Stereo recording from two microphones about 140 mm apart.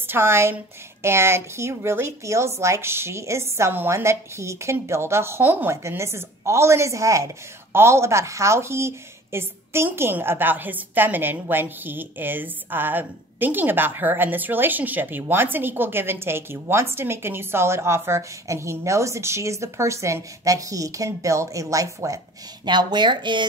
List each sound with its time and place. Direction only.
0.0 s a woman's voice: 15° right (ahead or behind); by 23.4 s 35° right (ahead or behind)